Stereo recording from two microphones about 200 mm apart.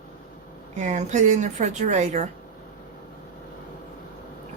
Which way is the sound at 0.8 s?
35° right (ahead or behind).